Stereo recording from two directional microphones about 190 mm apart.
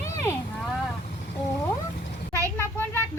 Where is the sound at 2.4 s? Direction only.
10° left (ahead or behind).